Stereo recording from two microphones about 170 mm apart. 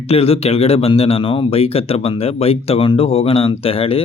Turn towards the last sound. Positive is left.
turn(degrees=35)  # may be behind; listen again after turning